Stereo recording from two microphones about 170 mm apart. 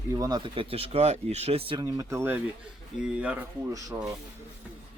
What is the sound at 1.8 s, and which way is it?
Speech, 20° right (ahead or behind).